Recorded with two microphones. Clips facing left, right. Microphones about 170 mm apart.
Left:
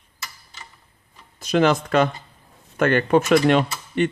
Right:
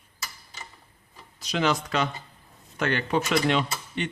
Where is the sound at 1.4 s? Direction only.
50° left (ahead or behind).